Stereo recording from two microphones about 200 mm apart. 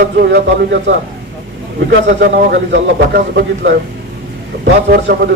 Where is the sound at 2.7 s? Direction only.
55° right (ahead or behind).